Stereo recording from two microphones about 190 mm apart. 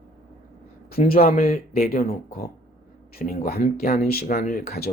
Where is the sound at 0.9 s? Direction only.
50° left (ahead or behind).